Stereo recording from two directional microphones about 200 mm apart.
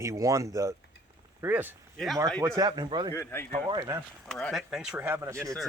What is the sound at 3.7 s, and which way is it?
Speech, 15° right (ahead or behind).